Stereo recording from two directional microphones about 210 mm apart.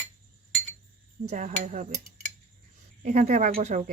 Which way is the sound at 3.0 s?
35° right (ahead or behind).